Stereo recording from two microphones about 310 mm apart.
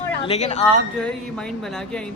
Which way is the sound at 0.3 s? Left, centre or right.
Left.